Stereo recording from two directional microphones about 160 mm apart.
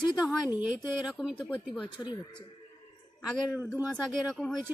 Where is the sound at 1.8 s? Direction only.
30° left (ahead or behind).